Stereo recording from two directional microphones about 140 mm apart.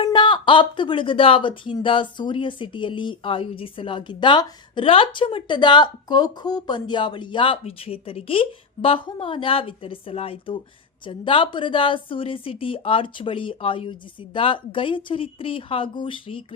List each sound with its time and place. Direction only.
0.0 s a woman's voice: 35° left (ahead or behind)